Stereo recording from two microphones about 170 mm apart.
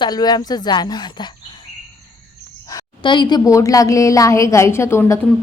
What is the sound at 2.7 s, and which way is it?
A woman's voice, 25° left (ahead or behind).